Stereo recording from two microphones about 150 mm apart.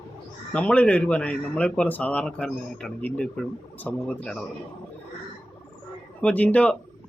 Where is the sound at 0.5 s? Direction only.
10° left (ahead or behind).